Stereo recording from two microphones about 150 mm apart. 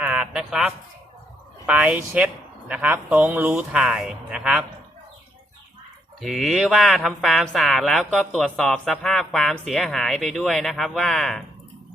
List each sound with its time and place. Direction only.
0.0 s a sound: 5° right (ahead or behind)
1.6 s speech: 10° right (ahead or behind)
6.1 s speech: centre (ahead or behind)